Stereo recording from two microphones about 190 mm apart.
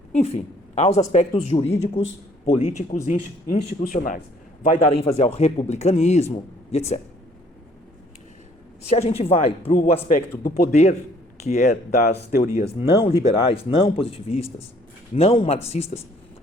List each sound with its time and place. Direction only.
0.1 s a woman's voice: 35° left (ahead or behind)
4.6 s speech: 35° left (ahead or behind)
8.9 s speech: 35° left (ahead or behind)
10.1 s speech: 50° left (ahead or behind)
10.7 s speech: 35° left (ahead or behind)
11.9 s speech: 55° left (ahead or behind)
12.6 s speech: 30° left (ahead or behind)